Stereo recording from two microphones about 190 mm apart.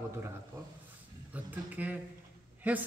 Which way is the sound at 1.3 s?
10° right (ahead or behind).